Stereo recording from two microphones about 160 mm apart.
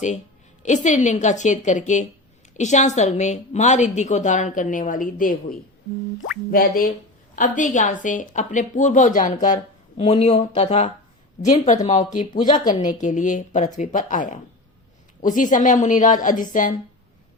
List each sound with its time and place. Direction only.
0.6 s a woman's voice: 50° left (ahead or behind)
10.0 s speech: 40° left (ahead or behind)
11.4 s a woman's voice: 50° left (ahead or behind)